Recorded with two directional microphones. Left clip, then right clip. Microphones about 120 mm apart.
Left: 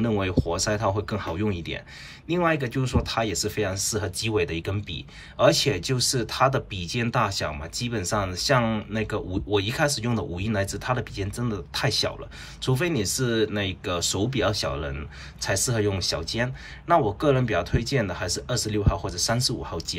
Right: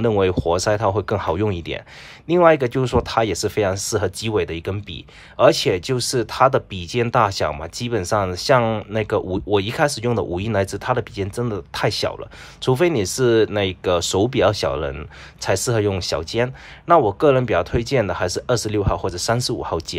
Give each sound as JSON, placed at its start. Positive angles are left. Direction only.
{"t": 0.0, "sound": "speech", "side_deg": -25}